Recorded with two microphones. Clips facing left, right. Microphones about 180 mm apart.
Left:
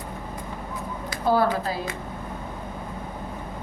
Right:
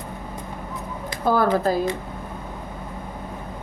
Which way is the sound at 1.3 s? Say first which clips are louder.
Right 4 dB; 45° right (ahead or behind).